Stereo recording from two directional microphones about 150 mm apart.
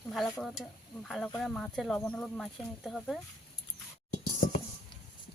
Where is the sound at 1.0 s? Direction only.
Centre (ahead or behind).